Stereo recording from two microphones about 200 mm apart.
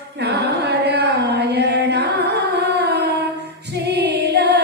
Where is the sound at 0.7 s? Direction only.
55° right (ahead or behind).